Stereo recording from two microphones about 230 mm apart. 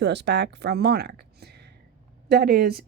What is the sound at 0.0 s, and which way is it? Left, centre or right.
Speech, right.